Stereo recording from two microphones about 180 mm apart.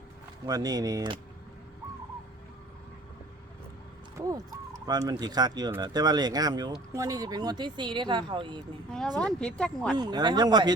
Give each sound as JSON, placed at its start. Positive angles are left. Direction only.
{"t": 0.4, "sound": "speech", "side_deg": -20}
{"t": 4.3, "sound": "speech", "side_deg": -20}
{"t": 8.9, "sound": "speech", "side_deg": 5}
{"t": 10.0, "sound": "speech", "side_deg": -25}